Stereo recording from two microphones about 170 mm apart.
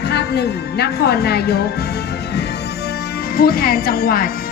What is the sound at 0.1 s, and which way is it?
A woman's voice, 75° left (ahead or behind).